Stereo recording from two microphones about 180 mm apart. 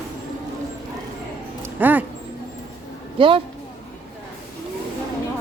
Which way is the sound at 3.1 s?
30° right (ahead or behind).